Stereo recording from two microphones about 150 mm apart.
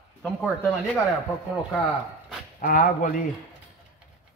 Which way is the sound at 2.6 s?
65° left (ahead or behind).